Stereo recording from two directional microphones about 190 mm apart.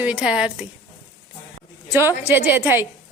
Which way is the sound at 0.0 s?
5° right (ahead or behind).